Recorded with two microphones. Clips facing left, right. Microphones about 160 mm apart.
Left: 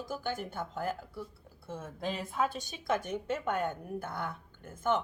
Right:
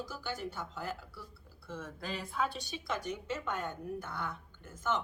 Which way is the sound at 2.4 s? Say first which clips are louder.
Left 5 dB; 50° left (ahead or behind).